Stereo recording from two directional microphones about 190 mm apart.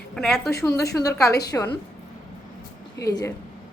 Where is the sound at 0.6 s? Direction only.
15° left (ahead or behind).